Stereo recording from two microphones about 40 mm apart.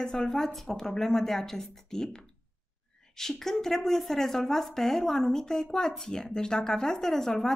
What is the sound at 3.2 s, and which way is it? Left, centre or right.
Speech, centre.